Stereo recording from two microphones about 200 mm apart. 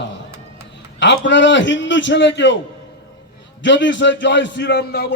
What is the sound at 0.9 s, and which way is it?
A man's voice, 65° left (ahead or behind).